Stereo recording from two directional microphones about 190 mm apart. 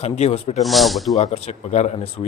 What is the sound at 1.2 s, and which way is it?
Speech, 35° left (ahead or behind).